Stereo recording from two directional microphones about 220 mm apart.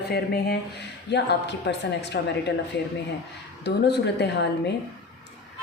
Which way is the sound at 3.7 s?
50° left (ahead or behind).